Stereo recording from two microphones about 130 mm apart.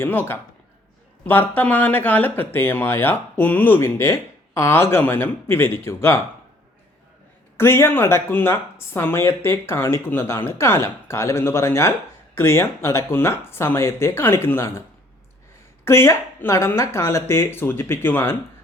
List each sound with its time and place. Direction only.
0.0 s speech: 15° left (ahead or behind)
7.5 s speech: 20° left (ahead or behind)